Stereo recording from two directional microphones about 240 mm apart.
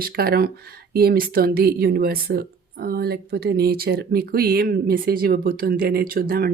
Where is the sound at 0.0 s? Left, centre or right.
Right.